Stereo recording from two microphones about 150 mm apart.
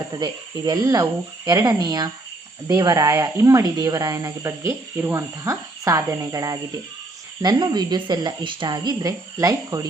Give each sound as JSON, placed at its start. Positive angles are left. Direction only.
{"t": 0.1, "sound": "speech", "side_deg": -25}